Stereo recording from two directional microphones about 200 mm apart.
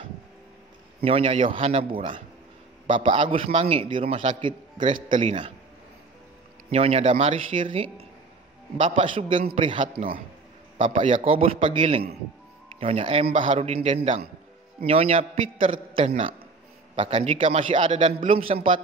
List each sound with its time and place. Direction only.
1.0 s a man's voice: 30° right (ahead or behind)
6.7 s a man's voice: 30° right (ahead or behind)
14.9 s speech: 30° right (ahead or behind)